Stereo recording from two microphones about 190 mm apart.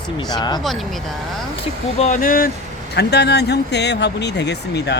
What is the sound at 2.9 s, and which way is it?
Speech, 60° left (ahead or behind).